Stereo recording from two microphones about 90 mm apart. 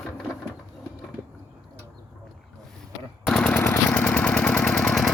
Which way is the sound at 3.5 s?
25° left (ahead or behind).